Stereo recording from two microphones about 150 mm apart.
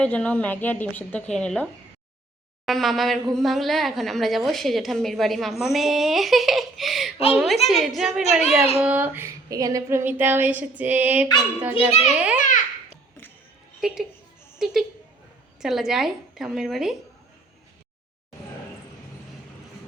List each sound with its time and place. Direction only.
0.0 s a woman's voice: 10° left (ahead or behind)
2.6 s speech: centre (ahead or behind)
8.8 s a sound: 10° right (ahead or behind)
11.9 s a child's voice: 40° left (ahead or behind)
12.1 s a sound: 10° right (ahead or behind)
13.8 s speech: 5° right (ahead or behind)